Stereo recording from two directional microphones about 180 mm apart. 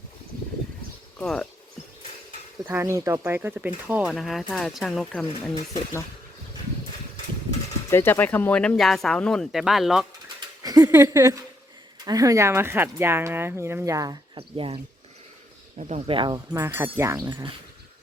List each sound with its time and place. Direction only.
1.2 s speech: 5° left (ahead or behind)
2.6 s speech: 15° right (ahead or behind)
7.9 s speech: 15° left (ahead or behind)
10.6 s speech: 20° right (ahead or behind)
14.3 s speech: 30° right (ahead or behind)
15.8 s speech: 40° right (ahead or behind)
16.5 s speech: 15° right (ahead or behind)